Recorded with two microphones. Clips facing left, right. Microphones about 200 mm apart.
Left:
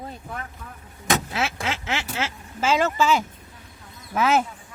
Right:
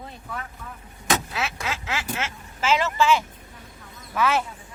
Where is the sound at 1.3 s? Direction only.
30° left (ahead or behind).